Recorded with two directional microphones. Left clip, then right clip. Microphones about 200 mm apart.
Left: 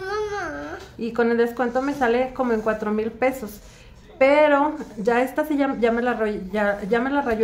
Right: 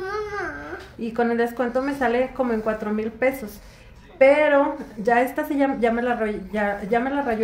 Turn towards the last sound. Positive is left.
turn(degrees=5)  # may be behind; listen again after turning